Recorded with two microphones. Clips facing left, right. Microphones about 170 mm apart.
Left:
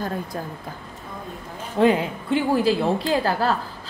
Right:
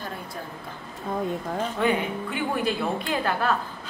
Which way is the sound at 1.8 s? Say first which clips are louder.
Left 8 dB; 35° left (ahead or behind).